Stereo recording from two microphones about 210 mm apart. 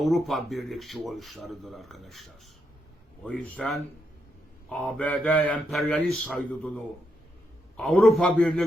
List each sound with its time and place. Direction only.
0.0 s speech: centre (ahead or behind)